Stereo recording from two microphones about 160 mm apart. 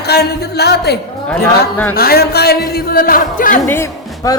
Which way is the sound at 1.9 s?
75° left (ahead or behind).